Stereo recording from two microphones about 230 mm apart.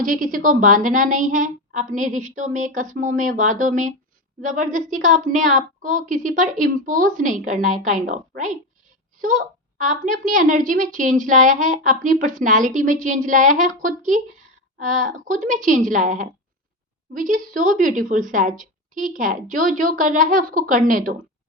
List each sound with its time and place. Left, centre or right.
0.0 s a child's voice: right